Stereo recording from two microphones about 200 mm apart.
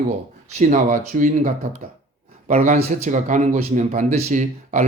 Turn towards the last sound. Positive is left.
turn(degrees=-35)  # may be behind; listen again after turning